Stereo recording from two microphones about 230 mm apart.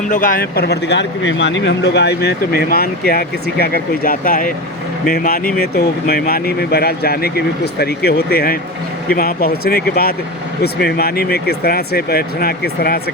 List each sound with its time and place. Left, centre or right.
0.1 s speech: left